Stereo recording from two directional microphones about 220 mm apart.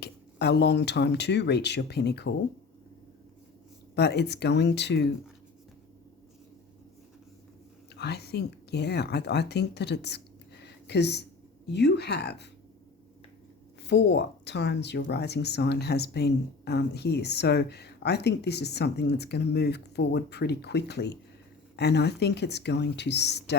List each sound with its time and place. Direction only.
0.0 s speech: 50° left (ahead or behind)
3.9 s speech: 50° left (ahead or behind)
7.9 s speech: 50° left (ahead or behind)
13.8 s speech: 50° left (ahead or behind)